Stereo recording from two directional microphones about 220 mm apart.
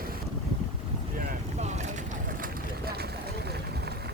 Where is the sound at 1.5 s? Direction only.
30° right (ahead or behind).